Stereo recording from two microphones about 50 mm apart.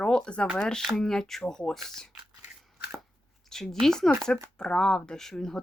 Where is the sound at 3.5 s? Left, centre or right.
Centre.